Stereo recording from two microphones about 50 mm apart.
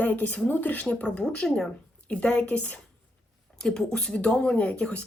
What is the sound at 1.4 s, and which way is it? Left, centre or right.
Speech, centre.